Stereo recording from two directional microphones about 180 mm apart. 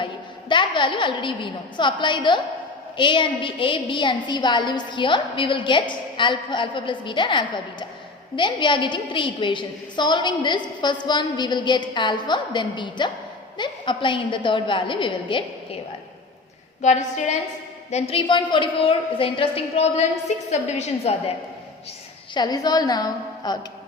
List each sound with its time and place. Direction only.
0.0 s a woman's voice: 25° left (ahead or behind)
16.8 s a woman's voice: 40° left (ahead or behind)
22.4 s a woman's voice: 20° left (ahead or behind)